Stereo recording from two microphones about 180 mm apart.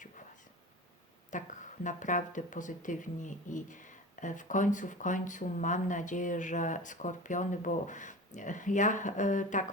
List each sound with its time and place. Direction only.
1.3 s speech: 45° left (ahead or behind)